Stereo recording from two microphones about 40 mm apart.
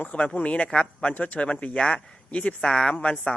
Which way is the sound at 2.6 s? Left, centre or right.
Centre.